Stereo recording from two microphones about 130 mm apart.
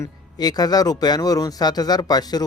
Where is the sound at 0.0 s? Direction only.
30° left (ahead or behind).